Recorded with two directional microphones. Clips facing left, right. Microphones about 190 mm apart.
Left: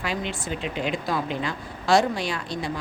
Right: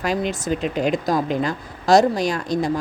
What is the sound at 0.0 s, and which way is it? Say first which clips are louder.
Speech: right 7 dB; 45° right (ahead or behind).